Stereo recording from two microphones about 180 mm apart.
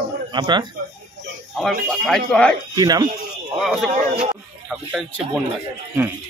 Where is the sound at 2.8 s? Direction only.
20° right (ahead or behind).